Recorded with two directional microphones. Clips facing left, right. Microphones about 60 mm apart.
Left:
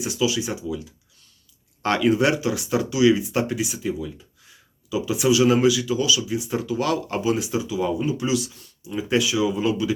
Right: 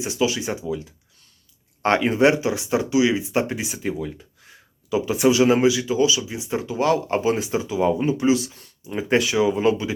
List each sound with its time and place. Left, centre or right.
0.0 s speech: right
3.9 s speech: right